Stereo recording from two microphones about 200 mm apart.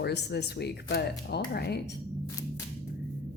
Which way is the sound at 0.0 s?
55° left (ahead or behind).